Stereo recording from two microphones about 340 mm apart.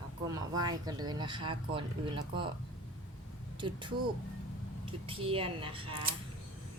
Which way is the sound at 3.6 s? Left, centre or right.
Centre.